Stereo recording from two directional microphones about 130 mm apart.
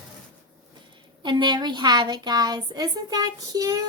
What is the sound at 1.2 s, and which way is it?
A woman's voice, 35° right (ahead or behind).